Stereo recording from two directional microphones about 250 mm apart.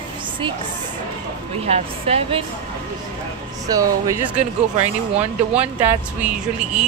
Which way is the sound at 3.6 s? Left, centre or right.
Centre.